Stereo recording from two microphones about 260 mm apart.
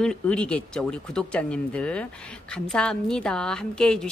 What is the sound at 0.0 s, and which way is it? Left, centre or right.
Speech, centre.